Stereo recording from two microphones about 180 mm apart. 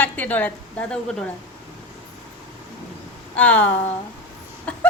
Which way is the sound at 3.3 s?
5° left (ahead or behind).